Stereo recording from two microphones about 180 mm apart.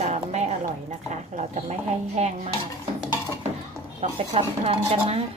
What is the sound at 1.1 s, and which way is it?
Speech, 40° right (ahead or behind).